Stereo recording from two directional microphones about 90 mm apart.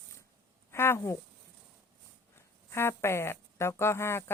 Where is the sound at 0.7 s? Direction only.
30° left (ahead or behind).